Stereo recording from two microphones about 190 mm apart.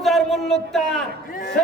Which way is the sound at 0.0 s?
Centre (ahead or behind).